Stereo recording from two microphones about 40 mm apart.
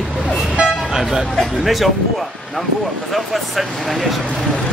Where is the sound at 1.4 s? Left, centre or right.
Centre.